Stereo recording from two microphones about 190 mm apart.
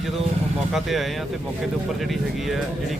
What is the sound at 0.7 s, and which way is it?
Speech, centre (ahead or behind).